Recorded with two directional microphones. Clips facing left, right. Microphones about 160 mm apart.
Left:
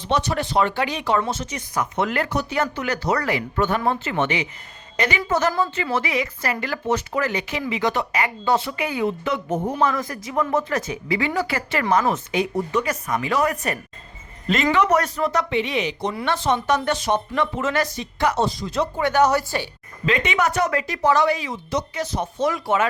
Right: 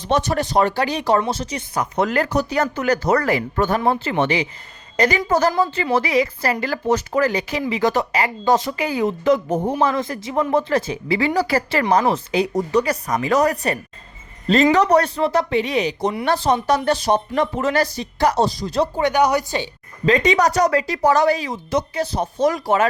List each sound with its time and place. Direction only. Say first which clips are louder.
0.0 s a woman's voice: right 3 dB; 45° right (ahead or behind)
9.8 s a woman's voice: right 2 dB; 25° right (ahead or behind)
19.0 s speech: left 1 dB; 15° right (ahead or behind)
20.1 s a woman's voice: right 5 dB; 35° right (ahead or behind)
21.9 s a woman's voice: right 3 dB; 35° right (ahead or behind)